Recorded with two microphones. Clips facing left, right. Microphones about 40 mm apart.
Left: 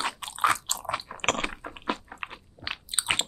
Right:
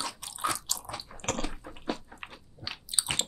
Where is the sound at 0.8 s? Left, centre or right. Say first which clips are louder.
Left 9 dB; left.